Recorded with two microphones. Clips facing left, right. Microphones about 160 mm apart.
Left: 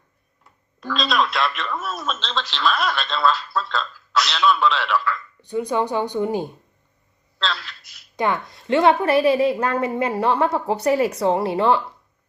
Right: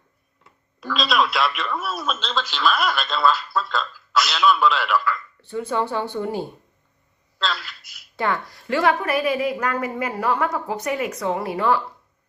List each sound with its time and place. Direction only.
0.8 s speech: centre (ahead or behind)
5.4 s speech: 15° left (ahead or behind)
7.3 s speech: centre (ahead or behind)
8.1 s a woman's voice: 20° left (ahead or behind)